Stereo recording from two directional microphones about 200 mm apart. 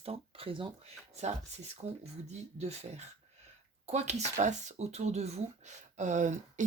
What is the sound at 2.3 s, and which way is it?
Speech, 30° right (ahead or behind).